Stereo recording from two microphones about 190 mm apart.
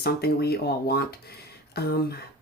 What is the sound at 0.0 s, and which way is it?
Speech, 55° left (ahead or behind).